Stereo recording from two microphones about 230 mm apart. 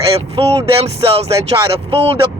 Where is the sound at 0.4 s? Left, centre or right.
Right.